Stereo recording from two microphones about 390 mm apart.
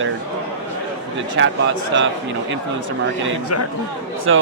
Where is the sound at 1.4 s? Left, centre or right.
Right.